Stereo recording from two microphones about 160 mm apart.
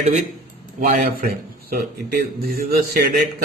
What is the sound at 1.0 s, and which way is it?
A man's voice, 65° right (ahead or behind).